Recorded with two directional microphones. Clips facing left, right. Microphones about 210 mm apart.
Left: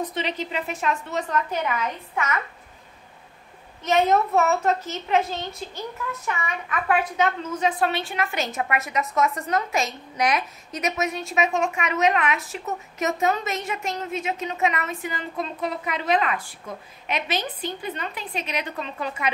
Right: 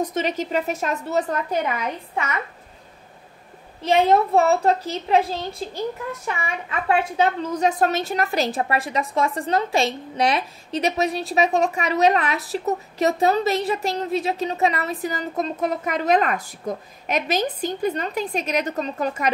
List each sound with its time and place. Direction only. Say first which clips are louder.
0.0 s a woman's voice: right 4 dB; 45° right (ahead or behind)
3.8 s a woman's voice: right 3 dB; 30° right (ahead or behind)